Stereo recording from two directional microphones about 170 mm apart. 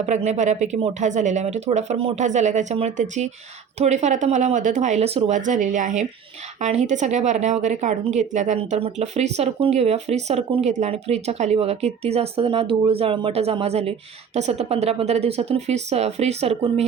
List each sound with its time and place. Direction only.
0.0 s speech: 40° right (ahead or behind)